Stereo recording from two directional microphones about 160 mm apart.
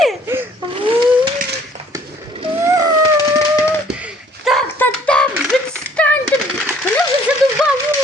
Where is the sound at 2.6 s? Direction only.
25° right (ahead or behind).